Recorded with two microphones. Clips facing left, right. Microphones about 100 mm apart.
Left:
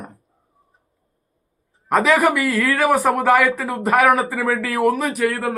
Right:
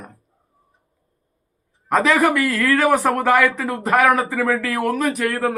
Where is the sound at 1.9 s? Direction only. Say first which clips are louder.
Even; centre (ahead or behind).